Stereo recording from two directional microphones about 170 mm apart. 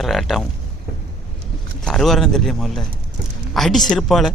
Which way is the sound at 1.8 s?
5° left (ahead or behind).